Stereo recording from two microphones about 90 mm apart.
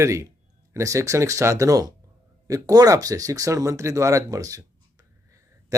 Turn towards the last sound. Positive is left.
turn(degrees=-40)  # may be behind; listen again after turning